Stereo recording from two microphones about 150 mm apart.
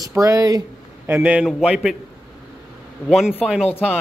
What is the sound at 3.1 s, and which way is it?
Speech, centre (ahead or behind).